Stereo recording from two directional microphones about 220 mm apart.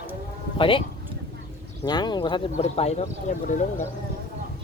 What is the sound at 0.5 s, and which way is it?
Speech, 25° left (ahead or behind).